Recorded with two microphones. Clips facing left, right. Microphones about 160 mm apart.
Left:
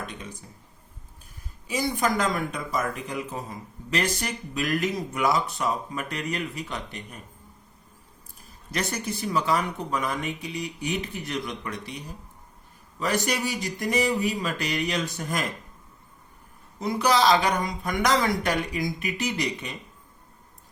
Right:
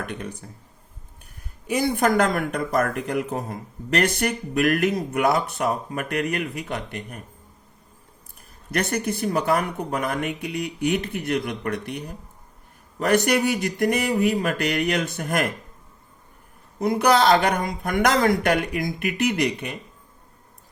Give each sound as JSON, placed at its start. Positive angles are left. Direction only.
{"t": 0.0, "sound": "speech", "side_deg": -65}
{"t": 1.6, "sound": "speech", "side_deg": -60}
{"t": 8.4, "sound": "speech", "side_deg": -60}
{"t": 16.8, "sound": "speech", "side_deg": -55}